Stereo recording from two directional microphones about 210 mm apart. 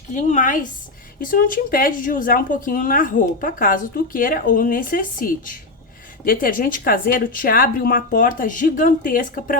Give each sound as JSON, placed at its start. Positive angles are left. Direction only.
{"t": 0.1, "sound": "a woman's voice", "side_deg": 35}